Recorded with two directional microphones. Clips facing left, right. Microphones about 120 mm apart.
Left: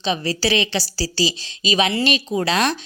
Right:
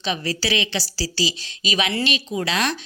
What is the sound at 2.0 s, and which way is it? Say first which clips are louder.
Speech: left 4 dB; 40° left (ahead or behind).